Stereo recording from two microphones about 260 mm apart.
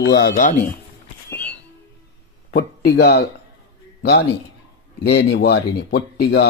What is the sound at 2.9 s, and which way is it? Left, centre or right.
A man's voice, left.